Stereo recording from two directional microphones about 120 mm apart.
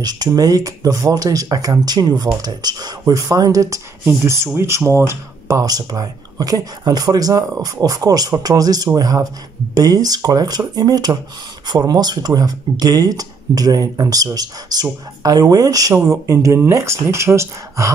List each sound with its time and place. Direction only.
0.0 s speech: 35° right (ahead or behind)